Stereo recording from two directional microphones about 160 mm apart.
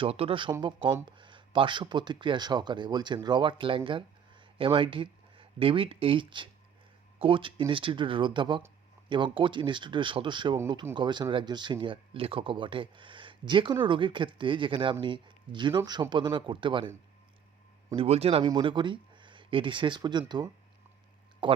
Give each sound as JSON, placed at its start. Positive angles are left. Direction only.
{"t": 0.0, "sound": "speech", "side_deg": -35}
{"t": 17.9, "sound": "speech", "side_deg": -40}